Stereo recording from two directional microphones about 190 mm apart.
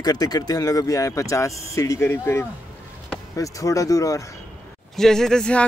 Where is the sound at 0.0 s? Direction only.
20° left (ahead or behind).